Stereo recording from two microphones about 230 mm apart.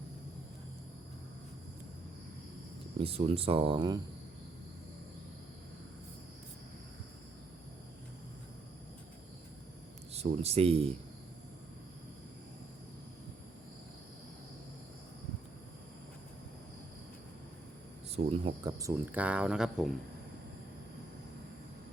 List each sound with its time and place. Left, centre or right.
3.0 s speech: right
10.1 s speech: right
18.3 s speech: centre